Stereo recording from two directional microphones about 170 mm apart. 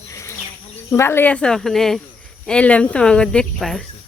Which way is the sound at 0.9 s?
15° left (ahead or behind).